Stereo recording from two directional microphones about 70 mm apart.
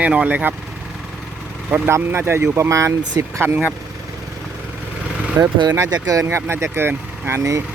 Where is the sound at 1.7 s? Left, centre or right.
Right.